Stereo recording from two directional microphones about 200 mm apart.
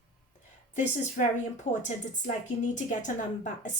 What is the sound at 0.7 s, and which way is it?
A woman's voice, 35° left (ahead or behind).